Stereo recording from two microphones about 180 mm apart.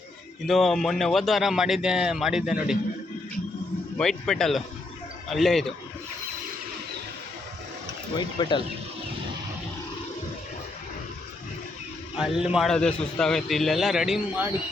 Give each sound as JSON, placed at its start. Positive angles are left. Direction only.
{"t": 0.4, "sound": "a man's voice", "side_deg": 0}
{"t": 3.9, "sound": "a man's voice", "side_deg": 5}
{"t": 8.2, "sound": "speech", "side_deg": 25}
{"t": 12.1, "sound": "a man's voice", "side_deg": -5}